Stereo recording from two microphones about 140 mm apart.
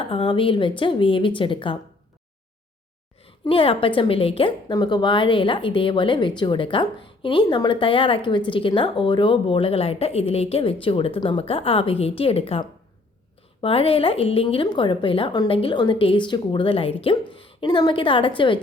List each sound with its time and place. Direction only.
0.0 s a woman's voice: 40° left (ahead or behind)
3.5 s a woman's voice: 40° left (ahead or behind)